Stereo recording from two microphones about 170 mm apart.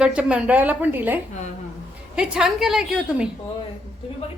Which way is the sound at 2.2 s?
5° right (ahead or behind).